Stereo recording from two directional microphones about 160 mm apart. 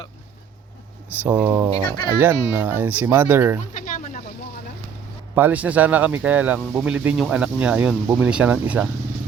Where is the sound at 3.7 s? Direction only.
50° left (ahead or behind).